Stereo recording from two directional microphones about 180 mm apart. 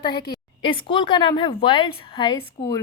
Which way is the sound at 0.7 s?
30° left (ahead or behind).